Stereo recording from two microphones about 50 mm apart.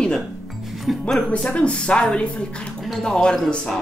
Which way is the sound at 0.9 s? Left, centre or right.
Centre.